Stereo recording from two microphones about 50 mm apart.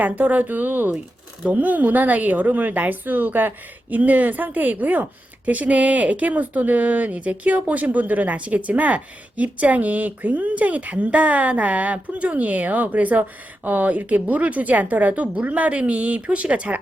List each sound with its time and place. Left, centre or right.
0.0 s speech: right